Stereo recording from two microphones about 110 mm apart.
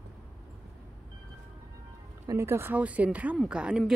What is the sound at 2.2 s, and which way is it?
Speech, 25° right (ahead or behind).